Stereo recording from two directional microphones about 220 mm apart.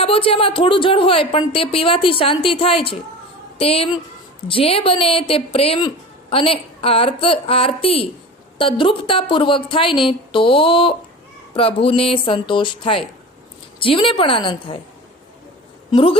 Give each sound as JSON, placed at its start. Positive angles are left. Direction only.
{"t": 0.0, "sound": "a woman's voice", "side_deg": 25}
{"t": 15.9, "sound": "a woman's voice", "side_deg": 25}